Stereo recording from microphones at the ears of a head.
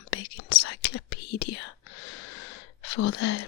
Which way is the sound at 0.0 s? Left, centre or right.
Left.